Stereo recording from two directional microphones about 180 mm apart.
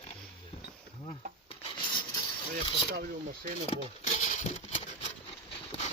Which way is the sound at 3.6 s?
40° left (ahead or behind).